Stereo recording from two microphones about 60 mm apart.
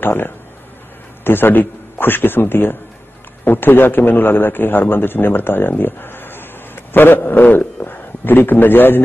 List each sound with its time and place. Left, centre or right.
0.0 s a man's voice: left